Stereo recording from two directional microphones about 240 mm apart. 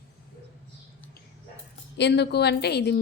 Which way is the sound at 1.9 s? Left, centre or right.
Left.